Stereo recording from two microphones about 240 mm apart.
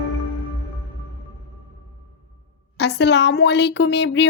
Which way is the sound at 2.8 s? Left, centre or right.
Left.